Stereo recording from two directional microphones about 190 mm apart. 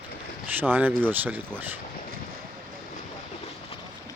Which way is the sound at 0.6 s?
10° right (ahead or behind).